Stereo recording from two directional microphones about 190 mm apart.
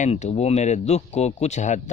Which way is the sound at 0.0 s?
35° left (ahead or behind).